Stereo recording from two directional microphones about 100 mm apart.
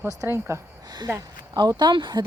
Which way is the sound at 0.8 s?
45° right (ahead or behind).